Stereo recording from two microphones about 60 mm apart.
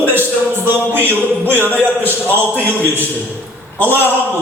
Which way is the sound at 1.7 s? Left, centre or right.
Left.